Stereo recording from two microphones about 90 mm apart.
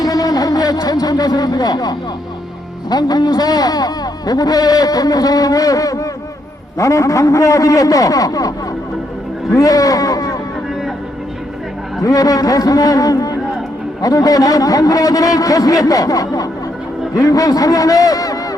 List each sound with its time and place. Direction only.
0.0 s a sound: 40° left (ahead or behind)
2.9 s a man's voice: 45° left (ahead or behind)
12.0 s a man's voice: 40° left (ahead or behind)